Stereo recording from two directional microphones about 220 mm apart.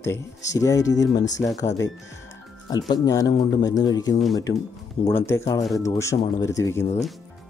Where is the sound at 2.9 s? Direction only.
15° left (ahead or behind).